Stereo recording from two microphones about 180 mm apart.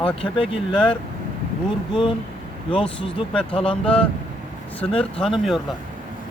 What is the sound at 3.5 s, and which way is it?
Speech, 30° left (ahead or behind).